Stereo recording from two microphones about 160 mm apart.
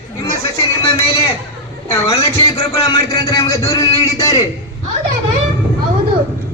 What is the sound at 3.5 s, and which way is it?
Speech, 20° left (ahead or behind).